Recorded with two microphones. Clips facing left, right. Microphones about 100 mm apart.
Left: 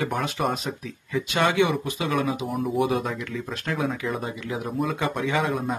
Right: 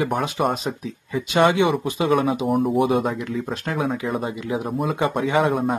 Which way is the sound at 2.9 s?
40° right (ahead or behind).